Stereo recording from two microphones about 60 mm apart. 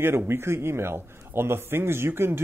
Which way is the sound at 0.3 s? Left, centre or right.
Right.